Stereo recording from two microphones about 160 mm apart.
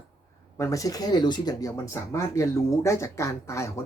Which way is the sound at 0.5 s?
20° left (ahead or behind).